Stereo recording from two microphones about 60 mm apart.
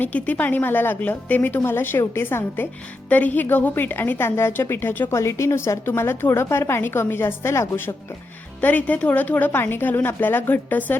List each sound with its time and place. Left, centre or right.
0.0 s a woman's voice: left
3.1 s a woman's voice: left
5.1 s a woman's voice: left
8.6 s a woman's voice: left